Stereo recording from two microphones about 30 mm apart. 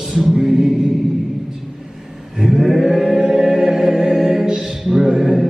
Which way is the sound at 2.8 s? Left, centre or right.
Centre.